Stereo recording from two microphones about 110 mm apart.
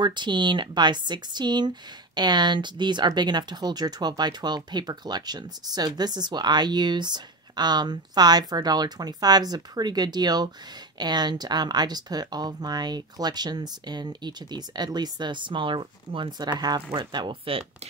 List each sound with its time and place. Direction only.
0.0 s speech: 45° right (ahead or behind)